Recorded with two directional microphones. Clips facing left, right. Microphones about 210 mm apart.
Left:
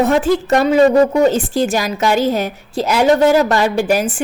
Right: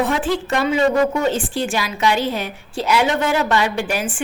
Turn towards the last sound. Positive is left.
turn(degrees=40)  # may be behind; listen again after turning